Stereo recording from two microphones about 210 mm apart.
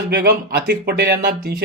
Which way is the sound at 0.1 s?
50° right (ahead or behind).